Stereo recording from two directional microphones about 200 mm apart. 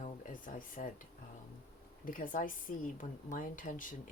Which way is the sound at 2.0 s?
40° left (ahead or behind).